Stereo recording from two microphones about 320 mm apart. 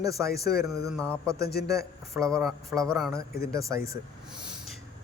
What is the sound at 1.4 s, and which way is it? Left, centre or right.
Speech, left.